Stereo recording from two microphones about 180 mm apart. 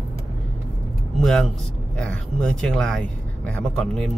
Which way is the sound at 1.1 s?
Centre (ahead or behind).